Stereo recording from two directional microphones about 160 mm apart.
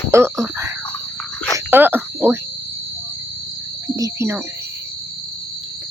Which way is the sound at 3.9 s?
20° right (ahead or behind).